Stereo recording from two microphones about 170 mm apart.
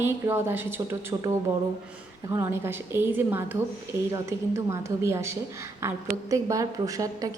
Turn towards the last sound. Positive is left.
turn(degrees=-20)  # may be behind; listen again after turning